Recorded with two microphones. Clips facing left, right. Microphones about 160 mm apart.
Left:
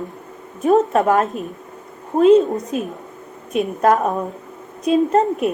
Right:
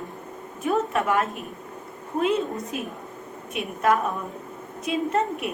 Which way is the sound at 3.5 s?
40° left (ahead or behind).